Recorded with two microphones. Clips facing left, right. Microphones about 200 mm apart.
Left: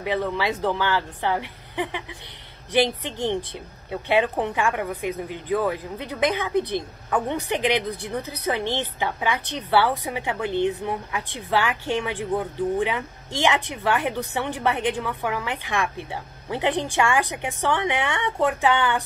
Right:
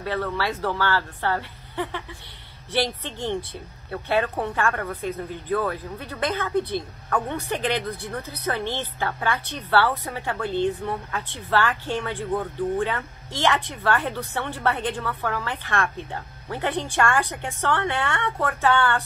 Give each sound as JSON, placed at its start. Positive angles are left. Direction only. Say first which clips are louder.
{"t": 0.0, "sound": "a woman's voice", "louder": "left 2 dB", "side_deg": 15}